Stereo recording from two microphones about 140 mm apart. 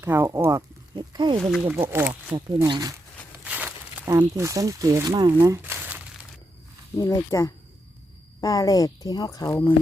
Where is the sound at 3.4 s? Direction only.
10° right (ahead or behind).